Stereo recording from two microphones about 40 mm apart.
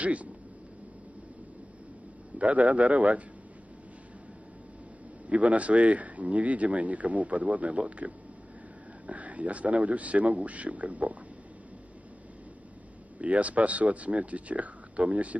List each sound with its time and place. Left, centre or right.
0.0 s speech: right
2.3 s speech: right
5.3 s speech: right
13.2 s speech: right